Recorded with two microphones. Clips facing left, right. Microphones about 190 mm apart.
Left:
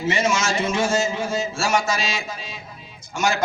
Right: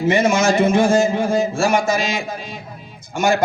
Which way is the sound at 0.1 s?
55° right (ahead or behind).